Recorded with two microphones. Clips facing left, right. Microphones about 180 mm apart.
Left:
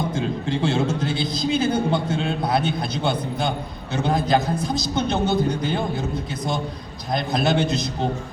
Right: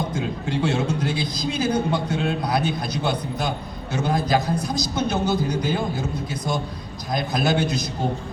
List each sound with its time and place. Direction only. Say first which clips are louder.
0.1 s a man's voice: left 2 dB; 25° left (ahead or behind)
7.1 s a man's voice: left 1 dB; 25° left (ahead or behind)